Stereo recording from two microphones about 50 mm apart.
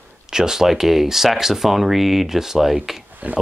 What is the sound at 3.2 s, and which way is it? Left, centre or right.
Speech, right.